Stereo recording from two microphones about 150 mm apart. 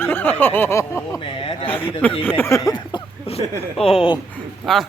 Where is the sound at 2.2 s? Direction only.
15° left (ahead or behind); by 4.2 s 35° left (ahead or behind).